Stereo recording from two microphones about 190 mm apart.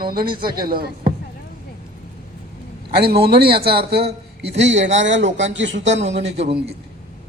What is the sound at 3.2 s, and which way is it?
A man's voice, 55° right (ahead or behind).